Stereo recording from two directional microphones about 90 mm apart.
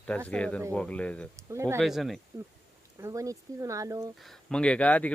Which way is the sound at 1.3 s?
35° right (ahead or behind).